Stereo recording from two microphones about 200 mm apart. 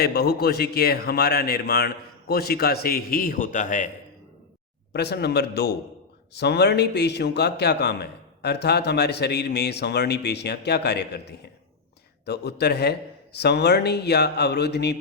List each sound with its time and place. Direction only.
0.0 s a man's voice: 55° left (ahead or behind)
4.9 s a man's voice: 55° left (ahead or behind)